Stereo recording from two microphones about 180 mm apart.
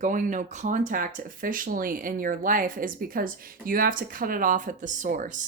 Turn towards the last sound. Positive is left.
turn(degrees=-45)  # may be behind; listen again after turning